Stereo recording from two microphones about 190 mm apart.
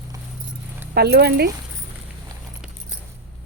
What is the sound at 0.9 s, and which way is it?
Speech, 60° right (ahead or behind).